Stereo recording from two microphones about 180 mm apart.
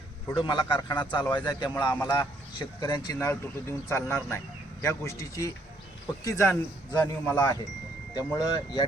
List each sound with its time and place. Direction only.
0.3 s a man's voice: 25° left (ahead or behind)